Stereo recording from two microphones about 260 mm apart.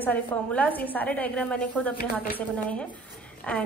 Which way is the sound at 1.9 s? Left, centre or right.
Left.